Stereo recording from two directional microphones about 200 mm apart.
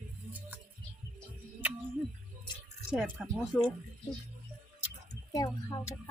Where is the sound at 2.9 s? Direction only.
5° right (ahead or behind).